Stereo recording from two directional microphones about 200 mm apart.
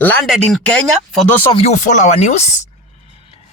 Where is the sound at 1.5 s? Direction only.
35° left (ahead or behind).